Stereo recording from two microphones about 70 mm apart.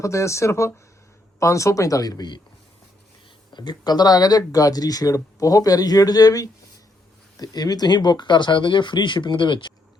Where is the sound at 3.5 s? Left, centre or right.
Left.